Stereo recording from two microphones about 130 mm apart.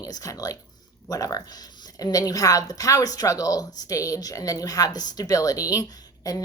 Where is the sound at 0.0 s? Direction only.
25° left (ahead or behind).